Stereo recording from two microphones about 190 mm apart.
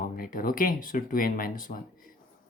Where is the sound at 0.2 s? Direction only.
50° left (ahead or behind).